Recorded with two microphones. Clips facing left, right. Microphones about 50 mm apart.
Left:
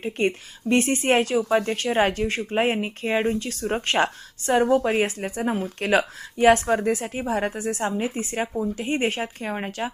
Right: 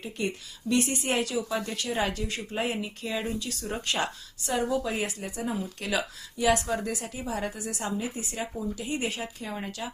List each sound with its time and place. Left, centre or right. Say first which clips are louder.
0.0 s a woman's voice: left 8 dB; left